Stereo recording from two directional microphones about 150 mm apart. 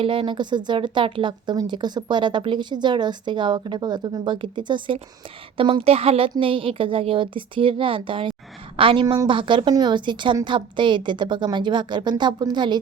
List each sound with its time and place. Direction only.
0.0 s speech: 35° right (ahead or behind)